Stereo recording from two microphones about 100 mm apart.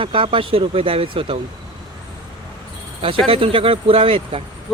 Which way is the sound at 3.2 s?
65° right (ahead or behind).